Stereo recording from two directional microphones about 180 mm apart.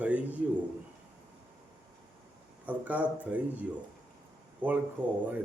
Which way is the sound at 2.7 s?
10° right (ahead or behind).